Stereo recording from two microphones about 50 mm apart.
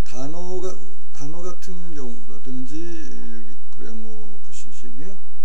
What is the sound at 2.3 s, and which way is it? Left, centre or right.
Speech, centre.